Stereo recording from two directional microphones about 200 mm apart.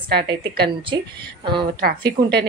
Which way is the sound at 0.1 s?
55° right (ahead or behind).